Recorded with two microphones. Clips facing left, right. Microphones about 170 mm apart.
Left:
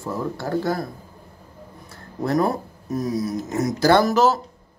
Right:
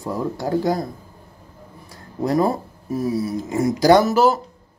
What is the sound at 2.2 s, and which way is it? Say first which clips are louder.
Speech: right 2 dB; 10° right (ahead or behind).